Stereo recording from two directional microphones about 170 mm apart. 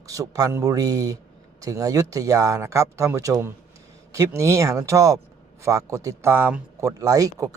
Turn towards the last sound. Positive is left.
turn(degrees=-20)  # may be behind; listen again after turning